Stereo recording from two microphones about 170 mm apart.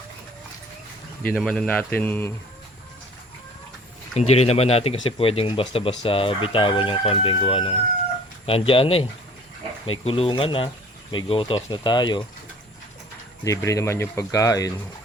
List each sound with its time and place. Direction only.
1.2 s speech: 5° left (ahead or behind)
4.1 s speech: 40° left (ahead or behind)
13.4 s speech: 20° left (ahead or behind)